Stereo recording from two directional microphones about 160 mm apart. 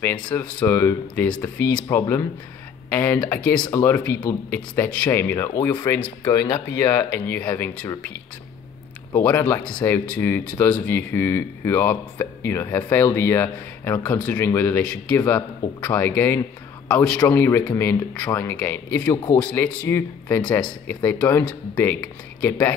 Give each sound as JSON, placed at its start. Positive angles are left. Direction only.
{"t": 0.3, "sound": "speech", "side_deg": 10}
{"t": 4.6, "sound": "speech", "side_deg": 10}
{"t": 6.2, "sound": "speech", "side_deg": 25}
{"t": 9.1, "sound": "a man's voice", "side_deg": 10}